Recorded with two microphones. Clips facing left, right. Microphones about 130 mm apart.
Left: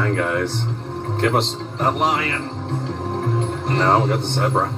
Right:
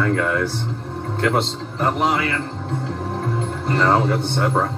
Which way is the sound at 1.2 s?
20° left (ahead or behind).